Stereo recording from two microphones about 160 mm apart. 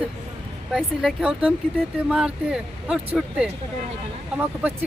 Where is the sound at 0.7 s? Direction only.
Centre (ahead or behind).